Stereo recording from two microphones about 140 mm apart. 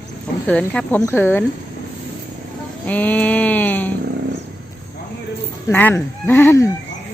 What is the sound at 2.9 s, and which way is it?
Speech, 10° left (ahead or behind).